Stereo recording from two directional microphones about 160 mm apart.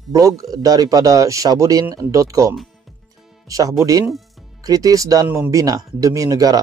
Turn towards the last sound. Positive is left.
turn(degrees=-25)  # may be behind; listen again after turning